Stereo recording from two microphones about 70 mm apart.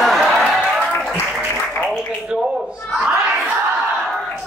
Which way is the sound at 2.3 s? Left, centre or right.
Centre.